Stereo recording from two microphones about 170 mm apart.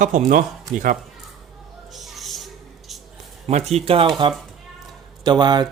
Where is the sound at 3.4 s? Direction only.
40° right (ahead or behind).